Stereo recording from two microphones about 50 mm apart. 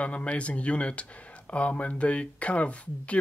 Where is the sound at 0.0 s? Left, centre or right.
Left.